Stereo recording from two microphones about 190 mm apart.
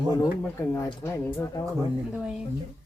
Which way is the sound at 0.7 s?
15° left (ahead or behind).